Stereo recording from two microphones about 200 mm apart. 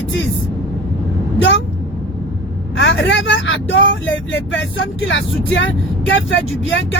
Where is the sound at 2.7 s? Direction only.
70° left (ahead or behind).